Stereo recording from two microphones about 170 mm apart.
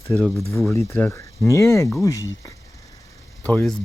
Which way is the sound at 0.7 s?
20° left (ahead or behind).